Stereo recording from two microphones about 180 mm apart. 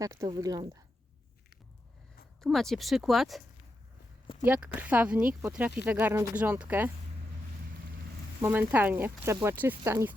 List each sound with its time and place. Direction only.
0.0 s speech: 20° right (ahead or behind)
2.4 s speech: centre (ahead or behind)
4.4 s speech: 10° right (ahead or behind)
8.4 s speech: 10° right (ahead or behind)